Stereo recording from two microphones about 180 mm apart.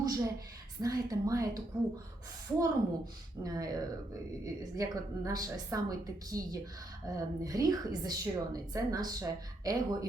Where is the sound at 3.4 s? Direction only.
20° right (ahead or behind).